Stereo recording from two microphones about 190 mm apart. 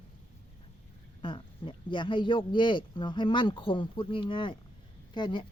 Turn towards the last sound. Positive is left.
turn(degrees=25)  # may be behind; listen again after turning